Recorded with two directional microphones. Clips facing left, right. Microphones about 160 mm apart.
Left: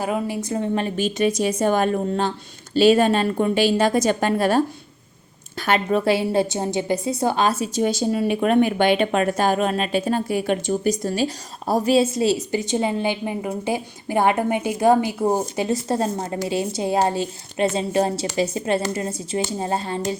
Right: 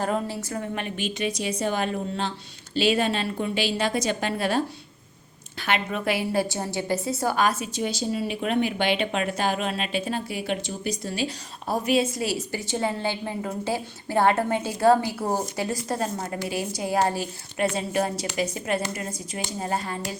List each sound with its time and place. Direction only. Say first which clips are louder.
0.0 s a woman's voice: left 3 dB; 10° left (ahead or behind)
7.8 s speech: left 6 dB; 50° left (ahead or behind); by 20.0 s 25° left (ahead or behind)